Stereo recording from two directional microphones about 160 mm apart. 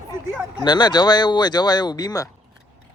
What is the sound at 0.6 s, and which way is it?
Speech, 25° left (ahead or behind).